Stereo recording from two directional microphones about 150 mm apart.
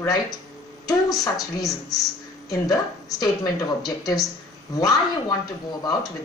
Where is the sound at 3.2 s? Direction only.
25° left (ahead or behind).